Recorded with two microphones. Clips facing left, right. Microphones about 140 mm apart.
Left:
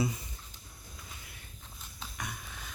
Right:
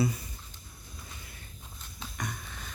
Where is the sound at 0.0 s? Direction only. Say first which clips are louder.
Right 3 dB; 20° left (ahead or behind).